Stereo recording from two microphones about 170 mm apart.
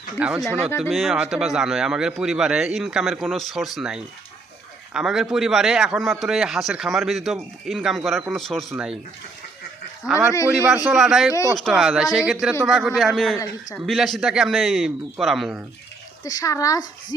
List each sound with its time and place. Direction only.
0.2 s a man's voice: 5° right (ahead or behind)
10.8 s a man's voice: centre (ahead or behind)
11.3 s speech: 20° left (ahead or behind)
11.5 s a man's voice: centre (ahead or behind)
16.2 s speech: 20° left (ahead or behind)